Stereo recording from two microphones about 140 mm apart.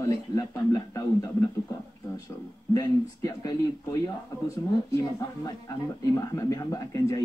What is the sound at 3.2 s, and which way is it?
Speech, 25° left (ahead or behind).